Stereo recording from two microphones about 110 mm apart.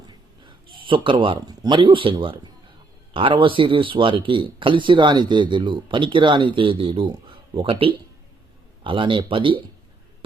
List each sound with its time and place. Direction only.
0.1 s speech: 45° right (ahead or behind)